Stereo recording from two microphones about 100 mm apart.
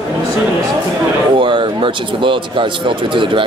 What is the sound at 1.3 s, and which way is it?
Speech, 55° right (ahead or behind).